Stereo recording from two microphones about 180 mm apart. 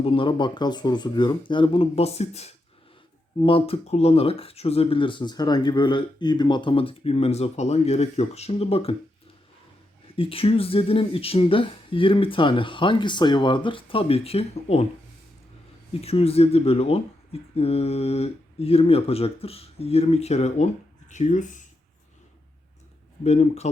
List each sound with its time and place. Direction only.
0.0 s speech: 30° left (ahead or behind)
10.2 s speech: 30° left (ahead or behind)
15.9 s speech: 35° left (ahead or behind)
23.2 s speech: 35° left (ahead or behind)